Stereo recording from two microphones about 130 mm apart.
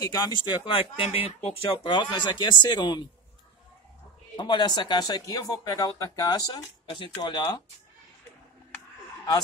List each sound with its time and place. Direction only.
0.0 s speech: 30° left (ahead or behind)
4.4 s speech: 35° left (ahead or behind)